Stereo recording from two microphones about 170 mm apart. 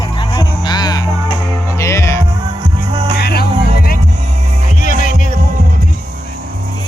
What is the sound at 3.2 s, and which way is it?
Music, 70° left (ahead or behind).